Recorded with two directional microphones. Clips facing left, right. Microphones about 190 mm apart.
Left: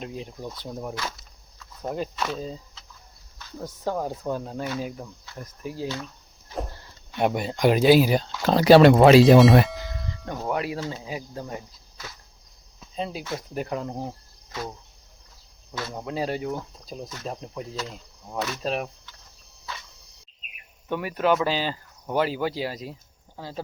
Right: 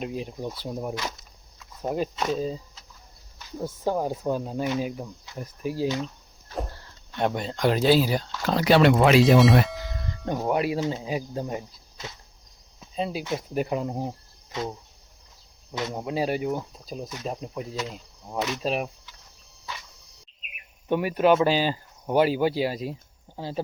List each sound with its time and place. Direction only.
0.0 s speech: 15° right (ahead or behind)
1.5 s a sound: 10° right (ahead or behind)
2.1 s speech: 15° right (ahead or behind)
6.7 s speech: 10° left (ahead or behind); by 9.2 s 35° left (ahead or behind)
9.6 s cowbell: centre (ahead or behind)
10.3 s speech: 15° right (ahead or behind)
13.0 s speech: 5° right (ahead or behind)
13.2 s speech: 15° right (ahead or behind)
15.7 s speech: 20° right (ahead or behind)
18.3 s speech: 20° right (ahead or behind)
20.9 s speech: 20° right (ahead or behind)